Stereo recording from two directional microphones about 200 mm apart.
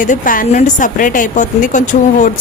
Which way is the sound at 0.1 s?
40° left (ahead or behind).